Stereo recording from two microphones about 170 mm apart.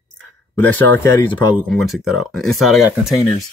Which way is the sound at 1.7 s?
Centre (ahead or behind).